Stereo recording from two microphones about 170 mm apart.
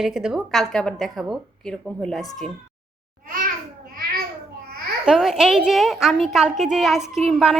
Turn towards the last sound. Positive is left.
turn(degrees=0)  # may be behind; listen again after turning